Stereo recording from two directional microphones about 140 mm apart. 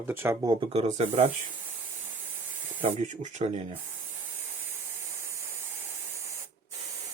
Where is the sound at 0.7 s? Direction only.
45° right (ahead or behind).